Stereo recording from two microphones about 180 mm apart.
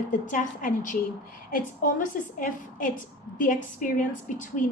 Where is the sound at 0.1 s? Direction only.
50° left (ahead or behind).